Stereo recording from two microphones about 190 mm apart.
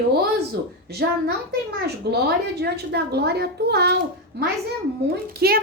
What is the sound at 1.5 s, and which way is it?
A woman's voice, 55° right (ahead or behind).